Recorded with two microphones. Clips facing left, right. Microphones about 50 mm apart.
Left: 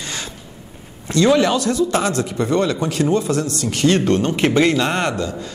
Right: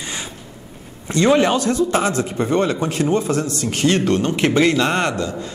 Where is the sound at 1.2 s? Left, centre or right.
Right.